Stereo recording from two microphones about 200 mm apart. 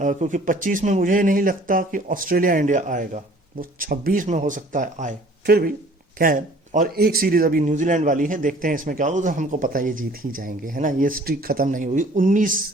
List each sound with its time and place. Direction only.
0.0 s a man's voice: 35° right (ahead or behind)